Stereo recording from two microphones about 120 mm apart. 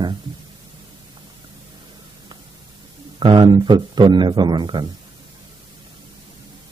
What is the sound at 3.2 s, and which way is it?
A man's voice, 40° right (ahead or behind).